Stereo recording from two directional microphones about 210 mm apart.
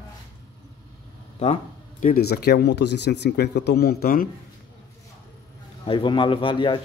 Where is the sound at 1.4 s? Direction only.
35° left (ahead or behind).